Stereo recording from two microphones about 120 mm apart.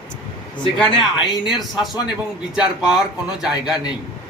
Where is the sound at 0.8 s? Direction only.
5° left (ahead or behind).